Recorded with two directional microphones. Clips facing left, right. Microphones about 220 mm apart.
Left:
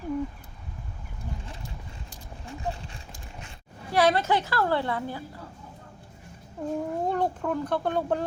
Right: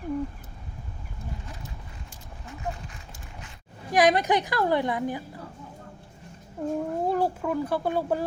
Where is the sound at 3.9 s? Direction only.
15° right (ahead or behind).